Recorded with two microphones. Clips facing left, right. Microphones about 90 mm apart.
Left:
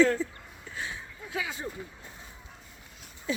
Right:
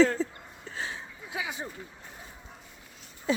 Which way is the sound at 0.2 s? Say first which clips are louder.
Right 2 dB; 30° right (ahead or behind).